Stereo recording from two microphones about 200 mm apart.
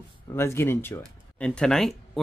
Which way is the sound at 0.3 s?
15° left (ahead or behind).